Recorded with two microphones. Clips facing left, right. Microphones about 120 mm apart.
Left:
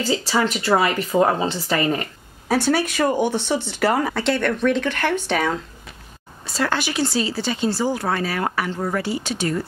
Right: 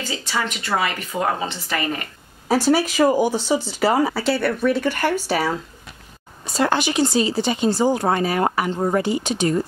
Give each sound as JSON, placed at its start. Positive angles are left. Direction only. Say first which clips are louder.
{"t": 0.1, "sound": "speech", "louder": "left 5 dB", "side_deg": 30}
{"t": 2.7, "sound": "speech", "louder": "right 5 dB", "side_deg": -10}
{"t": 6.4, "sound": "speech", "louder": "right 3 dB", "side_deg": -20}